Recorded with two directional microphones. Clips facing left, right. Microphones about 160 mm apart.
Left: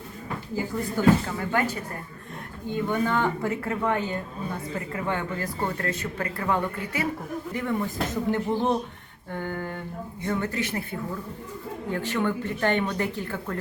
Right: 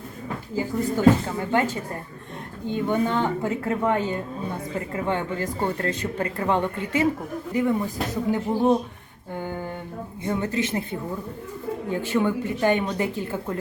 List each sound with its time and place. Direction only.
0.5 s speech: 20° right (ahead or behind)
2.8 s speech: 20° right (ahead or behind)
7.5 s speech: 15° right (ahead or behind)
11.9 s speech: 15° right (ahead or behind)